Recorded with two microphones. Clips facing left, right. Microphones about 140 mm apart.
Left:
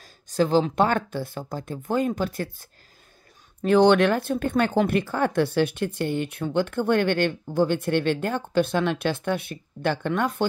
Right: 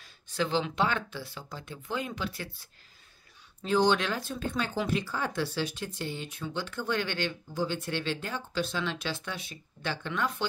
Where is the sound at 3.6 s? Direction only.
60° left (ahead or behind).